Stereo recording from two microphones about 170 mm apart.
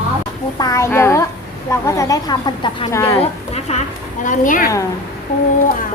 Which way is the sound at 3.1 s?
35° left (ahead or behind).